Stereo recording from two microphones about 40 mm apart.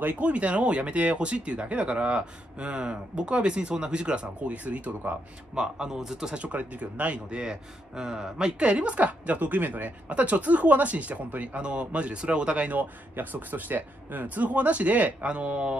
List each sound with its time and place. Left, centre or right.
0.0 s speech: right
5.6 s speech: centre
6.3 s speech: right
8.0 s speech: centre; by 9.9 s right
10.0 s speech: right
13.1 s speech: right